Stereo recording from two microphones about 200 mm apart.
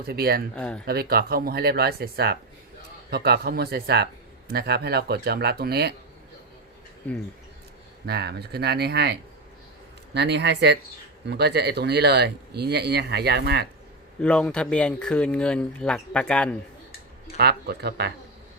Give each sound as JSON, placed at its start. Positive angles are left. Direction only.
{"t": 0.0, "sound": "speech", "side_deg": -50}
{"t": 0.5, "sound": "speech", "side_deg": 5}
{"t": 0.9, "sound": "speech", "side_deg": -50}
{"t": 8.0, "sound": "speech", "side_deg": -55}
{"t": 10.2, "sound": "speech", "side_deg": -60}
{"t": 14.2, "sound": "speech", "side_deg": 5}
{"t": 17.3, "sound": "speech", "side_deg": -55}